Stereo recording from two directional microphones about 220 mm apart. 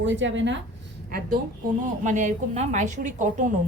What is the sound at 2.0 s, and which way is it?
A woman's voice, 35° right (ahead or behind).